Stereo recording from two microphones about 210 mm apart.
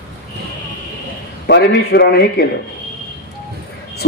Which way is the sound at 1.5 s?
55° left (ahead or behind).